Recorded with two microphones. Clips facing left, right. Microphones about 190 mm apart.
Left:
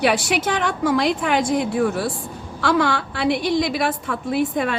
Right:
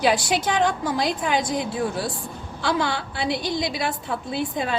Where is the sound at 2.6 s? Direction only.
55° left (ahead or behind).